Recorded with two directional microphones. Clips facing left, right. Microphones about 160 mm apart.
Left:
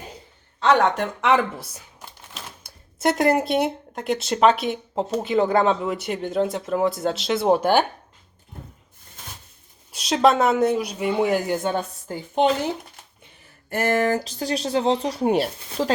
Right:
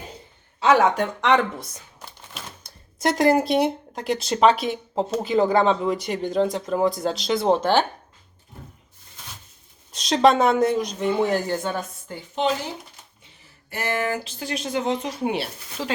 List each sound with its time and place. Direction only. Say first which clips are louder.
0.6 s speech: right 1 dB; 5° right (ahead or behind); by 7.9 s 10° left (ahead or behind)
9.9 s a woman's voice: right 1 dB; 5° left (ahead or behind)
11.8 s speech: left 3 dB; 45° left (ahead or behind)